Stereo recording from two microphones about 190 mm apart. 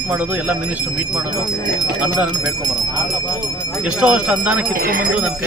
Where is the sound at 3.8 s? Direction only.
5° right (ahead or behind).